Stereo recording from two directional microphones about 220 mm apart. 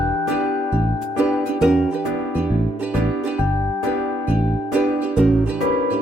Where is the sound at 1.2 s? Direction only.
5° right (ahead or behind).